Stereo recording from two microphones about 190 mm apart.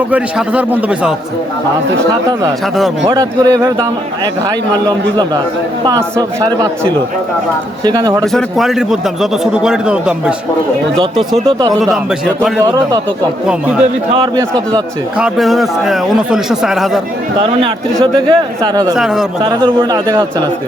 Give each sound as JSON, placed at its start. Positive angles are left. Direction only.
{"t": 0.1, "sound": "speech", "side_deg": -5}
{"t": 2.7, "sound": "a man's voice", "side_deg": 0}
{"t": 3.1, "sound": "speech", "side_deg": -20}
{"t": 4.9, "sound": "speech", "side_deg": -20}
{"t": 7.9, "sound": "speech", "side_deg": -25}
{"t": 8.3, "sound": "a man's voice", "side_deg": 0}
{"t": 11.3, "sound": "speech", "side_deg": -30}
{"t": 12.4, "sound": "speech", "side_deg": -10}
{"t": 14.1, "sound": "speech", "side_deg": -30}
{"t": 15.2, "sound": "a man's voice", "side_deg": 0}
{"t": 18.0, "sound": "speech", "side_deg": -25}
{"t": 18.9, "sound": "a man's voice", "side_deg": 0}
{"t": 19.4, "sound": "speech", "side_deg": -20}